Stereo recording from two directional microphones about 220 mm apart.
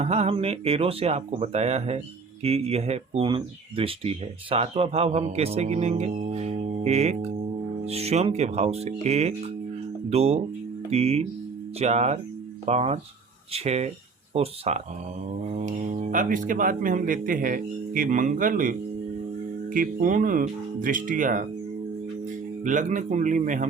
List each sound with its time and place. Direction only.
0.0 s speech: 30° right (ahead or behind)
22.6 s speech: 35° right (ahead or behind)